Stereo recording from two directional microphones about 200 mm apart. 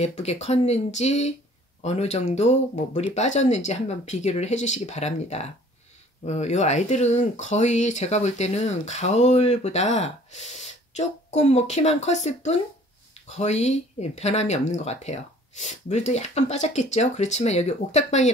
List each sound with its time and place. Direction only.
0.0 s speech: 30° left (ahead or behind)